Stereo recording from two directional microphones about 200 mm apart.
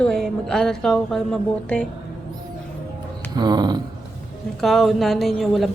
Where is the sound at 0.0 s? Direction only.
Centre (ahead or behind).